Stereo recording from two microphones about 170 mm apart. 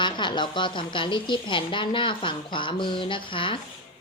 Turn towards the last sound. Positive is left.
turn(degrees=30)  # may be behind; listen again after turning